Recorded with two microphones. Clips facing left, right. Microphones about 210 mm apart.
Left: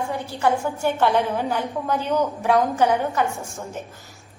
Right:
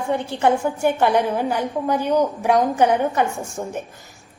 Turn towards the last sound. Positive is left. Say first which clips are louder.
# right 4 dB
turn(degrees=-15)  # may be behind; listen again after turning